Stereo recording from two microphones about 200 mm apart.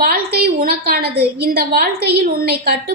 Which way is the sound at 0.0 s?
50° right (ahead or behind).